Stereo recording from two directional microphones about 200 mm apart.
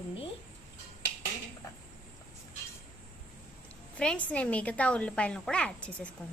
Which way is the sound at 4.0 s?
5° left (ahead or behind).